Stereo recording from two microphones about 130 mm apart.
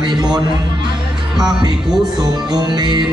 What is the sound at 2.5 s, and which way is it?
Speech, 35° right (ahead or behind).